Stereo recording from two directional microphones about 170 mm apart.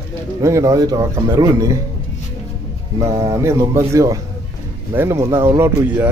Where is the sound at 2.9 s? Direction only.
20° right (ahead or behind).